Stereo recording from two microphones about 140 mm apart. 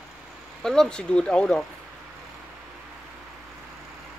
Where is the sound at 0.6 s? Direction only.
5° left (ahead or behind).